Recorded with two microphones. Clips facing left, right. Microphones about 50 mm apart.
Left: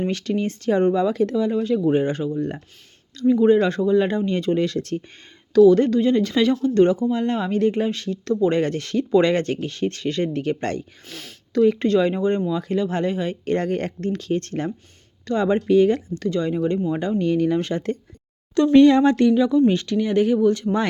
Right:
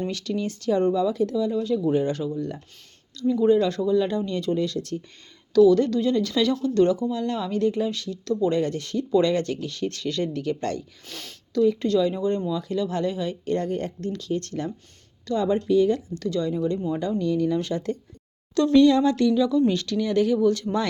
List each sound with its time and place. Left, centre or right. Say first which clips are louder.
0.0 s speech: left 4 dB; left
1.0 s speech: left 3 dB; left
1.9 s speech: left 3 dB; left
11.1 s speech: even; centre
11.6 s speech: left 3 dB; left
13.4 s speech: left 3 dB; left
15.3 s speech: left 3 dB; left
16.1 s speech: left 3 dB; left
16.9 s speech: left 3 dB; left